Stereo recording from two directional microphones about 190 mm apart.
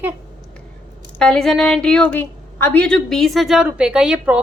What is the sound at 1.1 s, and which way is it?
A woman's voice, 5° left (ahead or behind).